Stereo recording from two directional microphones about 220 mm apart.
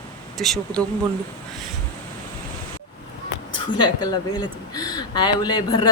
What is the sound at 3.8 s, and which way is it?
Speech, 20° left (ahead or behind).